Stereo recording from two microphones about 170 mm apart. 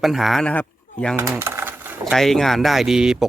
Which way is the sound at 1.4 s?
15° right (ahead or behind).